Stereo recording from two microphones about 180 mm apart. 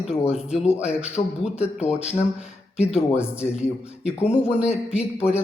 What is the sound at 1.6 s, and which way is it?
Speech, 40° left (ahead or behind).